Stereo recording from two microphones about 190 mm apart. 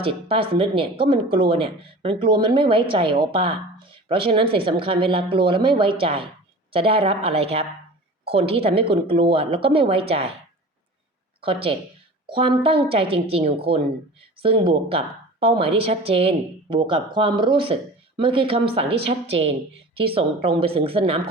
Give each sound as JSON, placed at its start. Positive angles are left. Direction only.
{"t": 0.0, "sound": "speech", "side_deg": -30}
{"t": 11.3, "sound": "speech", "side_deg": -30}
{"t": 20.0, "sound": "speech", "side_deg": -30}